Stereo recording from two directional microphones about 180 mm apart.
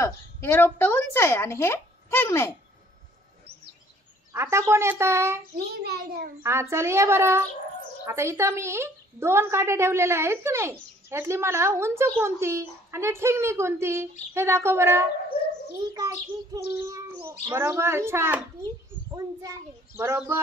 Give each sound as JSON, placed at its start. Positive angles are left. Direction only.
{"t": 0.0, "sound": "a woman's voice", "side_deg": 10}
{"t": 4.3, "sound": "a woman's voice", "side_deg": -15}
{"t": 5.9, "sound": "a child's voice", "side_deg": -60}
{"t": 6.4, "sound": "a woman's voice", "side_deg": -15}
{"t": 15.3, "sound": "dog", "side_deg": 60}
{"t": 15.8, "sound": "a child's voice", "side_deg": -20}